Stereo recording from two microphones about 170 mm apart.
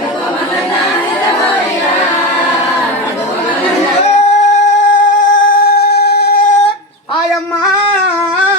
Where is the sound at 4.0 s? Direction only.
40° left (ahead or behind); by 6.6 s 55° left (ahead or behind).